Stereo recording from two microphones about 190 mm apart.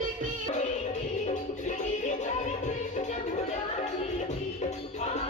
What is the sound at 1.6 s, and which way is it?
Music, 40° left (ahead or behind).